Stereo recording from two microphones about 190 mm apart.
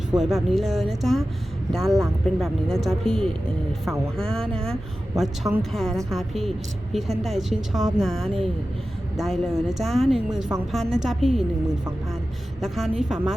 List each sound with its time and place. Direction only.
0.1 s speech: centre (ahead or behind)
12.6 s speech: centre (ahead or behind)